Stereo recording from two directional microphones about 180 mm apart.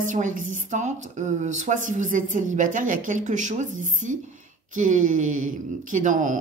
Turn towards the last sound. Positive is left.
turn(degrees=-45)  # may be behind; listen again after turning